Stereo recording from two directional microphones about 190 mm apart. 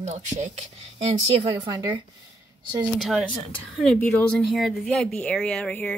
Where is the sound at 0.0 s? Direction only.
40° right (ahead or behind).